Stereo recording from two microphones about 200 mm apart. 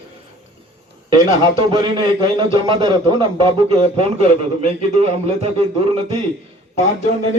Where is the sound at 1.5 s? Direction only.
25° right (ahead or behind).